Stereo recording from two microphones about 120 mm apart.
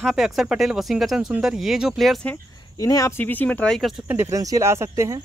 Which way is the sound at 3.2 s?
15° left (ahead or behind).